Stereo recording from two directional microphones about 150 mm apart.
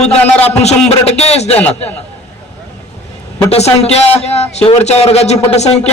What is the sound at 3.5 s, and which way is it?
A man's voice, 45° left (ahead or behind).